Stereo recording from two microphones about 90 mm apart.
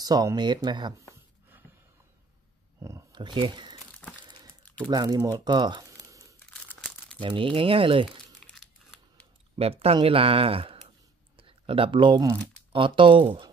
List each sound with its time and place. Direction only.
0.0 s speech: 45° right (ahead or behind)
2.8 s a sound: 35° right (ahead or behind)
3.1 s speech: 60° right (ahead or behind)
4.2 s a sound: 55° right (ahead or behind)
4.8 s speech: 50° right (ahead or behind)
7.2 s speech: 65° right (ahead or behind)
8.4 s crumpling: 5° left (ahead or behind)
9.7 s speech: 90° right; by 13.5 s 70° right (ahead or behind)